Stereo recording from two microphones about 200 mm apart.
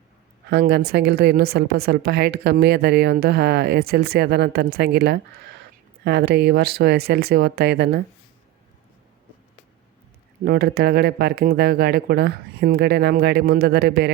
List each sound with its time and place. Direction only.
0.5 s a woman's voice: 55° right (ahead or behind)
10.4 s a woman's voice: 50° right (ahead or behind)